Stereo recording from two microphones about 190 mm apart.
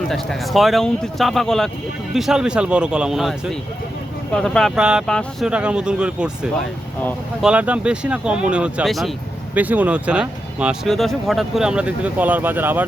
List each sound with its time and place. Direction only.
0.1 s speech: centre (ahead or behind)